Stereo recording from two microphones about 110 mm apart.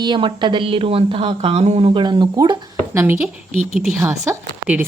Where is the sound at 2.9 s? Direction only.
20° right (ahead or behind).